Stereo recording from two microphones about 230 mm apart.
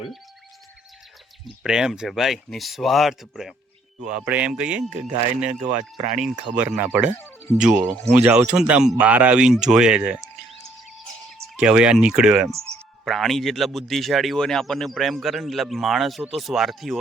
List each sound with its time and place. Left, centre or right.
1.5 s speech: centre
4.9 s speech: right
6.7 s speech: centre
7.2 s music: centre
8.1 s speech: centre
11.6 s speech: centre